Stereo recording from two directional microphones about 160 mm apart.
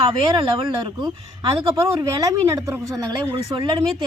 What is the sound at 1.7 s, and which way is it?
Speech, 20° right (ahead or behind).